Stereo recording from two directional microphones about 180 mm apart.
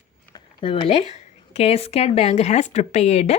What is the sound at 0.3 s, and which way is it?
Speech, 25° left (ahead or behind).